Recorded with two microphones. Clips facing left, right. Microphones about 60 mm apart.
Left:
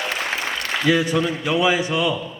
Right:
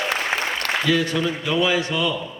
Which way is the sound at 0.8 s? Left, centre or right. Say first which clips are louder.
Left 3 dB; centre.